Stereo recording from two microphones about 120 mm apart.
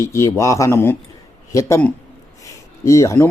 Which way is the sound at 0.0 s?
20° left (ahead or behind).